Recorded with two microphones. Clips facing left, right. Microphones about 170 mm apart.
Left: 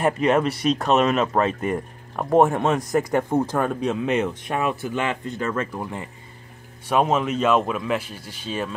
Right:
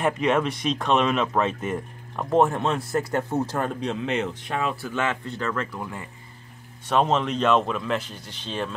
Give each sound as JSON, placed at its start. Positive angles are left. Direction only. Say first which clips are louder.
{"t": 0.0, "sound": "speech", "louder": "left 3 dB", "side_deg": 0}
{"t": 0.7, "sound": "speech", "louder": "left 1 dB", "side_deg": 40}
{"t": 1.4, "sound": "speech", "louder": "left 3 dB", "side_deg": 0}
{"t": 2.1, "sound": "speech", "louder": "left 3 dB", "side_deg": 45}
{"t": 3.3, "sound": "speech", "louder": "left 4 dB", "side_deg": 55}
{"t": 3.6, "sound": "speech", "louder": "left 4 dB", "side_deg": 15}
{"t": 6.9, "sound": "speech", "louder": "left 2 dB", "side_deg": 10}